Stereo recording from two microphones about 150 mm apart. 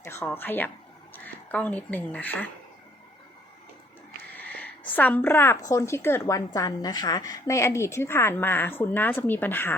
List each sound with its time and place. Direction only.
0.0 s a woman's voice: 15° left (ahead or behind)
4.4 s a woman's voice: 10° left (ahead or behind)